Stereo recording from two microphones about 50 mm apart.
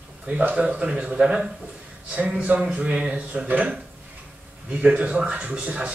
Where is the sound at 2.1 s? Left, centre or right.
Right.